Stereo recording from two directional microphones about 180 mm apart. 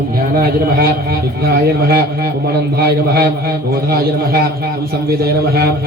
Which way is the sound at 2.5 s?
60° right (ahead or behind).